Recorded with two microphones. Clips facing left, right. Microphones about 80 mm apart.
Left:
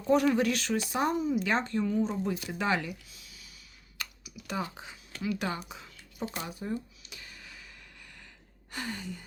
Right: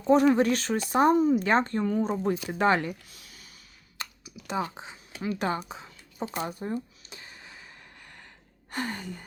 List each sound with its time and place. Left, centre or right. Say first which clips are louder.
0.1 s speech: right 4 dB; right
3.9 s clicking: right 2 dB; right
4.6 s speech: right 4 dB; right
5.2 s a sound: right 4 dB; right
8.7 s speech: right 4 dB; right